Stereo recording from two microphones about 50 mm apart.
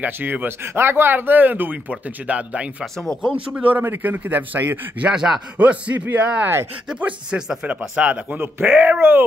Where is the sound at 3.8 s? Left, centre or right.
Right.